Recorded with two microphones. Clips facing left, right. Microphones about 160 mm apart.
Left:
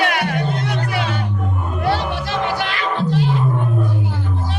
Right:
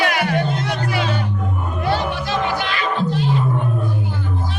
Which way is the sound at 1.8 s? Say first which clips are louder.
Left 1 dB; 70° left (ahead or behind).